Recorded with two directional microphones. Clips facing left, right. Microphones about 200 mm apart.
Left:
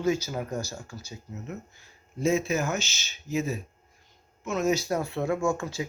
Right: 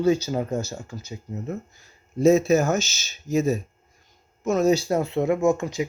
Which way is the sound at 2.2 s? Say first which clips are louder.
Right 8 dB; 40° right (ahead or behind).